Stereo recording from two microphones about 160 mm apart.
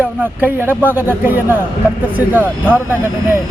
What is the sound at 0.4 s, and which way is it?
Speech, 15° right (ahead or behind).